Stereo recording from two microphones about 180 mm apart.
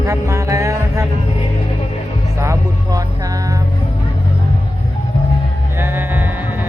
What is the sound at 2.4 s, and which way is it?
Music, 15° right (ahead or behind).